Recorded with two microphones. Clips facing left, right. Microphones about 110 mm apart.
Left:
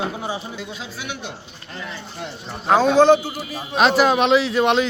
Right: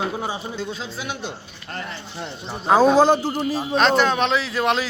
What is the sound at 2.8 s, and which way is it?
Speech, 35° right (ahead or behind).